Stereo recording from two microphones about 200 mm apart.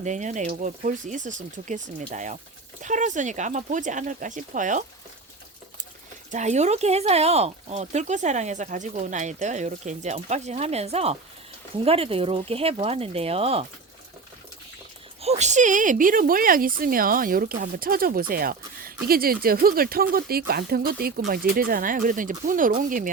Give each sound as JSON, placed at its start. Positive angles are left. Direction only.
{"t": 0.0, "sound": "speech", "side_deg": -35}
{"t": 6.3, "sound": "speech", "side_deg": -35}
{"t": 15.2, "sound": "speech", "side_deg": -35}